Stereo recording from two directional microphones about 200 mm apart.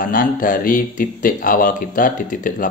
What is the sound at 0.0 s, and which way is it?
Speech, 45° left (ahead or behind).